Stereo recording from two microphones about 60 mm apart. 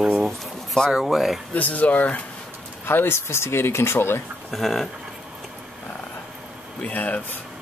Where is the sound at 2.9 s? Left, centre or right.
Left.